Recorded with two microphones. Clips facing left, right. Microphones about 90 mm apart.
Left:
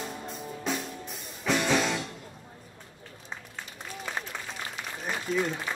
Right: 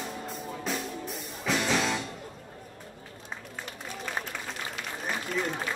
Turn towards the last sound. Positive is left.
turn(degrees=-55)  # may be behind; listen again after turning